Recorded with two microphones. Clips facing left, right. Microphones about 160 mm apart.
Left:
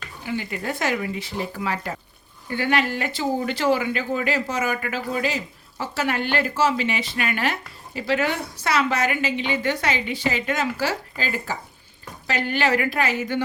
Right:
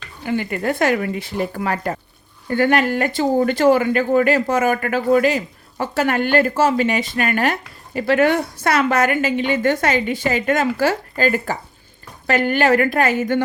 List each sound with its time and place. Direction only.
0.3 s speech: 55° right (ahead or behind)